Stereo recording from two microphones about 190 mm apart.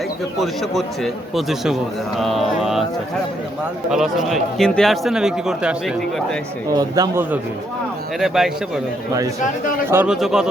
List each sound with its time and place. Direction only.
0.4 s speech: centre (ahead or behind)
3.8 s speech: centre (ahead or behind)
6.7 s speech: 20° right (ahead or behind)
8.2 s speech: centre (ahead or behind)
9.9 s speech: 5° right (ahead or behind)